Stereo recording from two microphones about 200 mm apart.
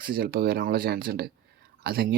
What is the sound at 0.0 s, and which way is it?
Speech, 50° right (ahead or behind).